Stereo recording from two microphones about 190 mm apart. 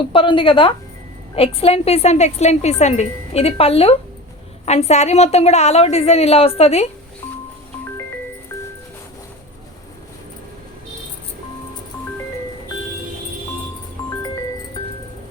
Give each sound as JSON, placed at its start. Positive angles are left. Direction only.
{"t": 0.1, "sound": "a woman's voice", "side_deg": 25}